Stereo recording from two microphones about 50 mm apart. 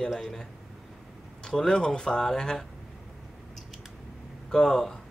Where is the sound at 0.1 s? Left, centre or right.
Centre.